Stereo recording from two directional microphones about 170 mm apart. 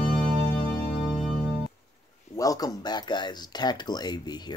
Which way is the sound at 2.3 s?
20° left (ahead or behind).